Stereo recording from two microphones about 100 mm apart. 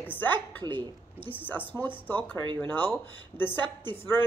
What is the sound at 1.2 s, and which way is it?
Speech, 20° left (ahead or behind).